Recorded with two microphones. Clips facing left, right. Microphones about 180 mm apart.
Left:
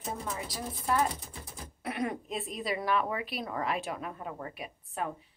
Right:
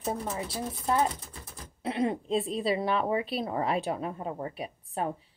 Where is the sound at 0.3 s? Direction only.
25° right (ahead or behind).